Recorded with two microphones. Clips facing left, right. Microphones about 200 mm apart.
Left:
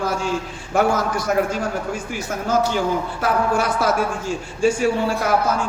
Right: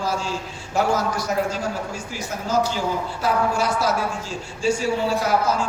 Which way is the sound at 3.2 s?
55° left (ahead or behind).